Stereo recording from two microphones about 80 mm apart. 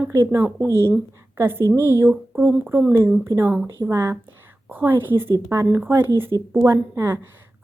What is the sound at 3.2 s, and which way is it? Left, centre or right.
Speech, right.